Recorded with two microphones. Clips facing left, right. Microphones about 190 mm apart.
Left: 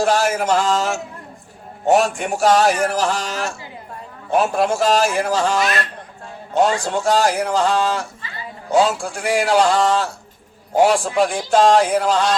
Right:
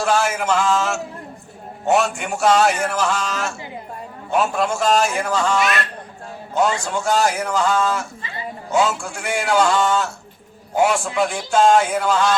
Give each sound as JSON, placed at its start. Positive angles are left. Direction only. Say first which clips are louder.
{"t": 0.0, "sound": "a man's voice", "louder": "left 2 dB", "side_deg": 35}